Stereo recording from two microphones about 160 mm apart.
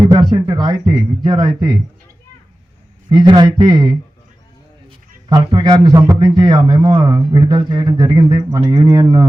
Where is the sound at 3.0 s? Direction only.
25° right (ahead or behind).